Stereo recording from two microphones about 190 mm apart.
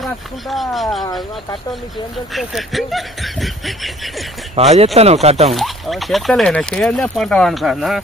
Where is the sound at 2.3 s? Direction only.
Centre (ahead or behind).